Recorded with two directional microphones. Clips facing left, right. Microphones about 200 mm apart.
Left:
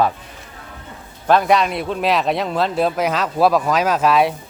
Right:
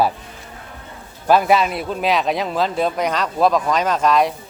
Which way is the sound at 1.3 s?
5° right (ahead or behind).